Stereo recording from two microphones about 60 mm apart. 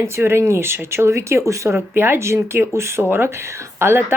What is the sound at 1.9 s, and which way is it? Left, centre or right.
Speech, right.